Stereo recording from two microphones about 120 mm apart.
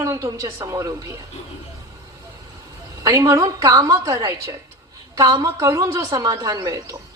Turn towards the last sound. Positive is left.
turn(degrees=-30)  # may be behind; listen again after turning